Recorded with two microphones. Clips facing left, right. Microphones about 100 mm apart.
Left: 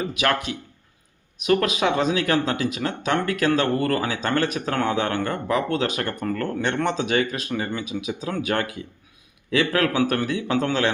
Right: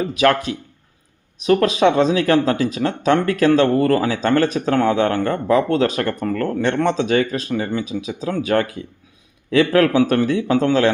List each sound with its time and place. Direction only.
0.0 s speech: 35° right (ahead or behind)